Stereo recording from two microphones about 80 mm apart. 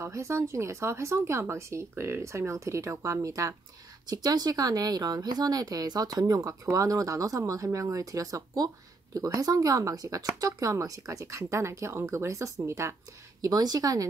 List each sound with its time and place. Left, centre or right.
0.0 s speech: right
4.0 s speech: right
13.4 s speech: right